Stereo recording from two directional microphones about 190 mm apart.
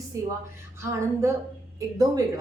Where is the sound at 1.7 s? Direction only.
20° right (ahead or behind).